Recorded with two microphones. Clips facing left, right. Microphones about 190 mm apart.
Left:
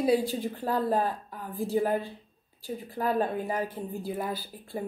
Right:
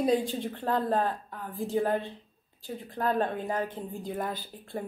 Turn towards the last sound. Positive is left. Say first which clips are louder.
# left 1 dB
turn(degrees=10)  # may be behind; listen again after turning